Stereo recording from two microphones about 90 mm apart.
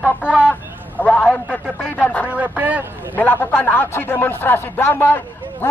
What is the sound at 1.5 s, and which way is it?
Speech, 10° right (ahead or behind).